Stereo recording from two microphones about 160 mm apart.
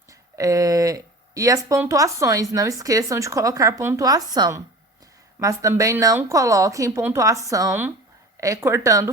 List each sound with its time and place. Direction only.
0.1 s speech: 20° right (ahead or behind)